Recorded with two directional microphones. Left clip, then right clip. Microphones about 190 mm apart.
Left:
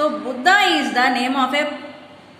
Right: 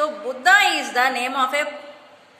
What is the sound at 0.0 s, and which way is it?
A woman's voice, 35° right (ahead or behind).